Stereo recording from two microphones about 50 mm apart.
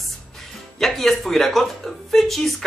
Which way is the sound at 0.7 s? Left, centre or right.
Centre.